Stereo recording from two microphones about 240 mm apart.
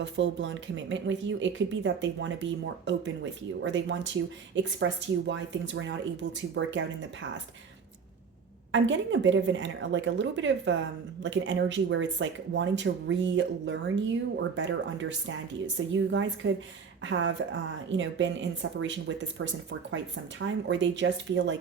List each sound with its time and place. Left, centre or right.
0.0 s speech: right
8.7 s speech: right